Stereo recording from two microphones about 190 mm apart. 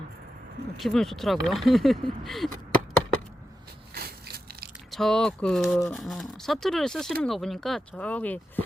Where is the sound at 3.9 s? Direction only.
55° right (ahead or behind).